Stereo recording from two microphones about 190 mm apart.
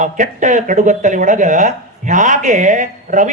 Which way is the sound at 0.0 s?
40° right (ahead or behind).